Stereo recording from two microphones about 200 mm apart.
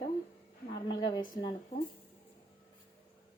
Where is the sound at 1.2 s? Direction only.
20° left (ahead or behind).